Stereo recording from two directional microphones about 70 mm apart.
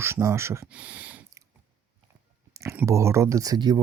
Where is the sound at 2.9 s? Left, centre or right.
Right.